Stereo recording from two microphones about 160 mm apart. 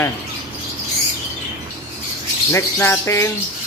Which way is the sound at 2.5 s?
15° left (ahead or behind).